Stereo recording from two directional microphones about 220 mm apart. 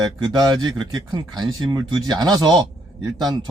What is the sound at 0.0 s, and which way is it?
Speech, 20° right (ahead or behind).